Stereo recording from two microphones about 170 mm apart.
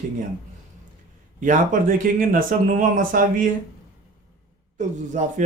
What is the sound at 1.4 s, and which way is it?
Speech, 50° right (ahead or behind).